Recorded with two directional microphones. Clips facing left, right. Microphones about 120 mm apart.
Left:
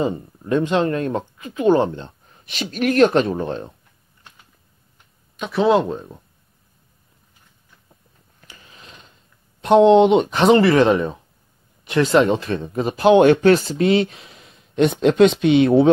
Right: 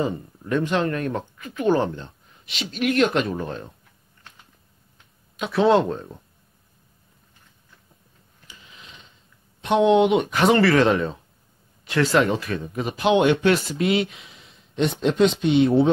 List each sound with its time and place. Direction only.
0.0 s speech: 20° left (ahead or behind)
2.0 s speech: 45° left (ahead or behind); by 3.7 s 30° left (ahead or behind)
5.4 s speech: centre (ahead or behind)
8.5 s mechanisms: 45° left (ahead or behind)
9.6 s speech: 35° left (ahead or behind)
15.0 s speech: 70° left (ahead or behind)